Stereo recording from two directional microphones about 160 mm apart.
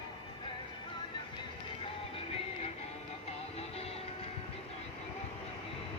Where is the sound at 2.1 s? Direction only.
35° left (ahead or behind).